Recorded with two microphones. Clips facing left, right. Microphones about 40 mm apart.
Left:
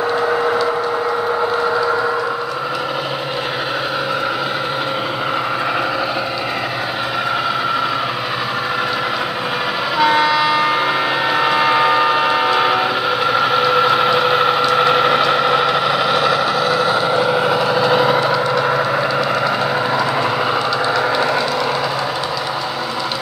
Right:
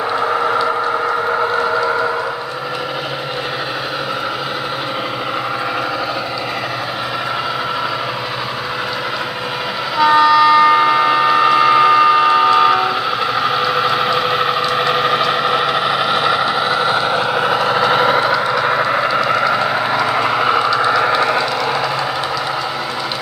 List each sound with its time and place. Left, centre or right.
9.9 s vehicle: centre; by 17.6 s right
17.6 s vehicle: right